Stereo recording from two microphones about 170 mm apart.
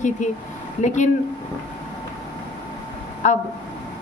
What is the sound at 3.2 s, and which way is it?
Speech, 45° left (ahead or behind).